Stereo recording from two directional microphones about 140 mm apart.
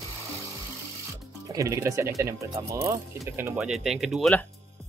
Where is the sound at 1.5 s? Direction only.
20° right (ahead or behind).